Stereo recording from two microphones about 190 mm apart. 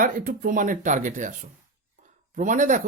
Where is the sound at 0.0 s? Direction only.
45° right (ahead or behind).